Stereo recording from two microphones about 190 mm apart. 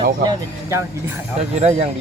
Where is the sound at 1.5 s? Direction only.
35° right (ahead or behind).